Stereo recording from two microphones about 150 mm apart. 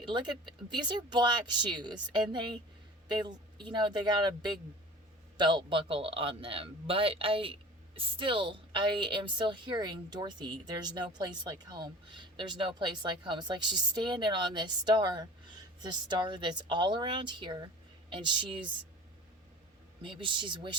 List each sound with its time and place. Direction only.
0.0 s speech: 30° right (ahead or behind)
5.4 s speech: 30° right (ahead or behind)
20.0 s speech: 35° right (ahead or behind)